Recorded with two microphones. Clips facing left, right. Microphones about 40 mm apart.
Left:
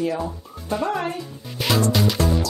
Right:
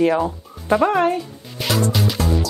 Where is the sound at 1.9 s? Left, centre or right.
Centre.